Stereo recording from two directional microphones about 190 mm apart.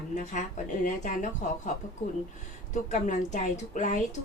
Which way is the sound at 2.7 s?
40° left (ahead or behind).